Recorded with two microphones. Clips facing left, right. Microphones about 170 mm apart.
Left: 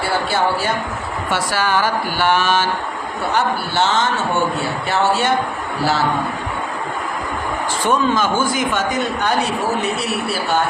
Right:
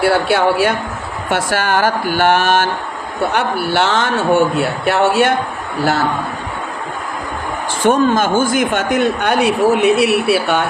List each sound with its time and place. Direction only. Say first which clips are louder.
0.0 s speech: right 5 dB; 65° right (ahead or behind)
1.3 s speech: right 3 dB; 50° right (ahead or behind)
3.3 s a man's voice: right 1 dB; 60° right (ahead or behind)
7.9 s a man's voice: right 5 dB; 50° right (ahead or behind); by 10.6 s 65° right (ahead or behind)